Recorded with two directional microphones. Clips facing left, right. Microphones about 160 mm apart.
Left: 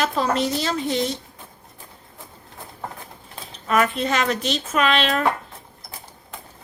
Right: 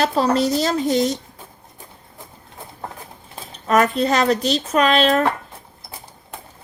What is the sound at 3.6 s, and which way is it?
Speech, 40° right (ahead or behind).